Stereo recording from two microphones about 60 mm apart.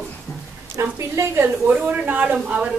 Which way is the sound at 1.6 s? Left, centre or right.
Right.